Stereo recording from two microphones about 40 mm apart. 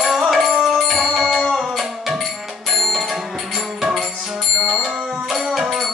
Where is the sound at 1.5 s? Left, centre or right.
Centre.